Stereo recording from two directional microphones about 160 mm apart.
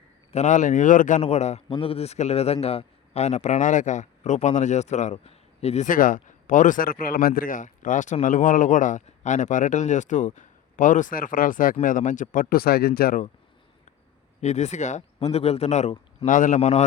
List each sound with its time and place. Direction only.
0.3 s a man's voice: 50° left (ahead or behind); by 13.2 s 70° left (ahead or behind)
14.4 s a man's voice: 45° left (ahead or behind)